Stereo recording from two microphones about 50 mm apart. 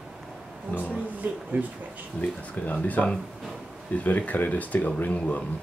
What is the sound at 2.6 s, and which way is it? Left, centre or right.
Speech, left.